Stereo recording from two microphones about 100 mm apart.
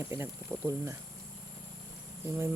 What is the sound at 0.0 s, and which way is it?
Speech, 25° right (ahead or behind).